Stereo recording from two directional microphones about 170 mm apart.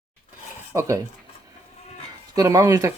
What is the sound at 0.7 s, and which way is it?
Speech, 20° right (ahead or behind).